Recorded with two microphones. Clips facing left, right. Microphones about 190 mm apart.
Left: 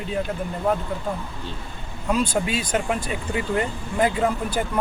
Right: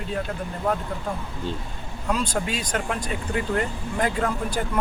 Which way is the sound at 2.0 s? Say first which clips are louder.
Left 3 dB; 5° left (ahead or behind).